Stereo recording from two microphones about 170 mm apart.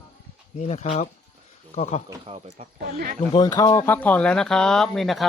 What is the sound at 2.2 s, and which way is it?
Speech, 40° right (ahead or behind).